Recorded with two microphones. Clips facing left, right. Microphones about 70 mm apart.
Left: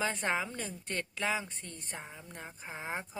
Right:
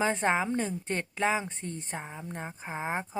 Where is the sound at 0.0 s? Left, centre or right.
Right.